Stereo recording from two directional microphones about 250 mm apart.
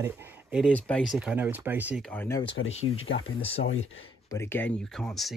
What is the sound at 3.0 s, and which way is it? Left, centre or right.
Speech, left.